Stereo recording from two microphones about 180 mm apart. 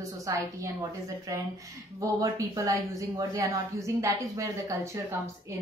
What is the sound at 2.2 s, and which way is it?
A woman's voice, 15° right (ahead or behind).